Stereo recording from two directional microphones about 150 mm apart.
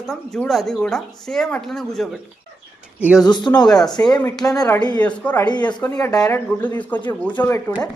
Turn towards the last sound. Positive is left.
turn(degrees=15)  # may be behind; listen again after turning